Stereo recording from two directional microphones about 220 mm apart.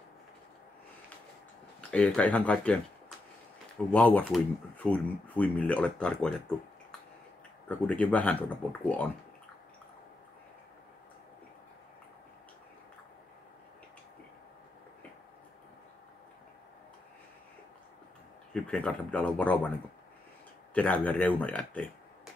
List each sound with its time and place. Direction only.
1.8 s speech: 5° left (ahead or behind)
3.9 s speech: 5° left (ahead or behind)
18.5 s speech: 5° left (ahead or behind)
20.7 s speech: 5° left (ahead or behind)